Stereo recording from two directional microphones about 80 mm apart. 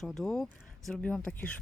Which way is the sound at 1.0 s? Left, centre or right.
Centre.